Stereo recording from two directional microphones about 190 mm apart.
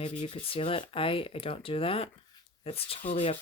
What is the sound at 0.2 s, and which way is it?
Speech, 30° left (ahead or behind).